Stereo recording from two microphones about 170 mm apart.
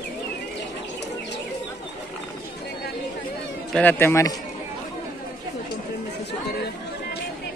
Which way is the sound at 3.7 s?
10° left (ahead or behind).